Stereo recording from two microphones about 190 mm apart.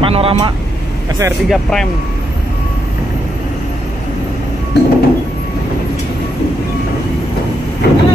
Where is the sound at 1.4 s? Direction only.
Centre (ahead or behind).